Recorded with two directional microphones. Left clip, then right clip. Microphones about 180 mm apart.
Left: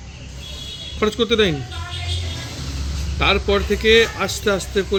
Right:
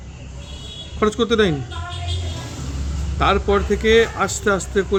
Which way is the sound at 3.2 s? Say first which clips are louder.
Even; 15° right (ahead or behind).